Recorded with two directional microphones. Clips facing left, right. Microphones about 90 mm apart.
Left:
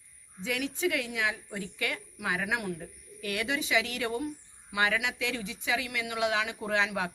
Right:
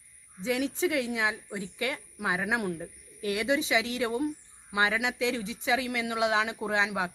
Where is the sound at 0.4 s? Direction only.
25° right (ahead or behind).